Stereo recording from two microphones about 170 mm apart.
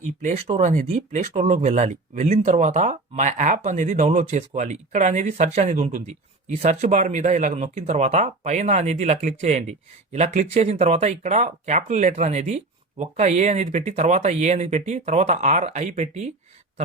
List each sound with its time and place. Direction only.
0.2 s speech: 45° right (ahead or behind)